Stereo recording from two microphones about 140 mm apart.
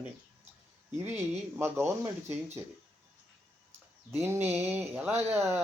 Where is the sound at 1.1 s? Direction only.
15° right (ahead or behind).